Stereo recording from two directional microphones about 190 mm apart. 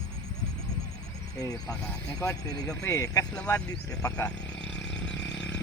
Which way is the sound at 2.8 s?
15° left (ahead or behind).